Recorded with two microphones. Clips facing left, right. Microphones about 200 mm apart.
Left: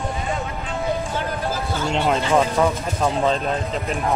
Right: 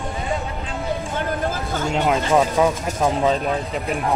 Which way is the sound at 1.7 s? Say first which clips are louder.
Right 1 dB; 50° right (ahead or behind).